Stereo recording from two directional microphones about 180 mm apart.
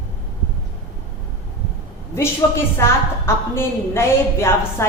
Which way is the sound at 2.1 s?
15° left (ahead or behind).